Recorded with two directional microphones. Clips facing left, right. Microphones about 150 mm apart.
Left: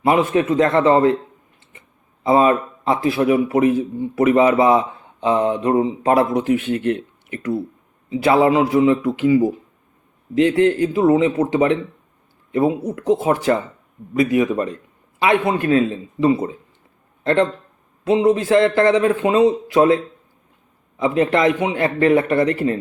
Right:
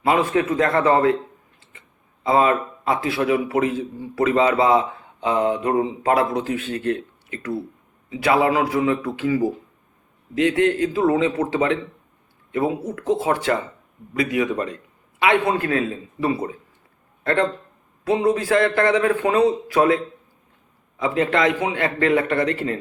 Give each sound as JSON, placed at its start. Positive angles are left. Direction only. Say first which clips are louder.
{"t": 0.0, "sound": "a man's voice", "louder": "left 3 dB", "side_deg": 20}
{"t": 2.2, "sound": "a man's voice", "louder": "left 3 dB", "side_deg": 25}
{"t": 21.0, "sound": "a man's voice", "louder": "left 3 dB", "side_deg": 20}